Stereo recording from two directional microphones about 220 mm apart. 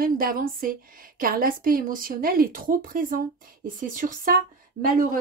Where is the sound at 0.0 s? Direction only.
40° right (ahead or behind).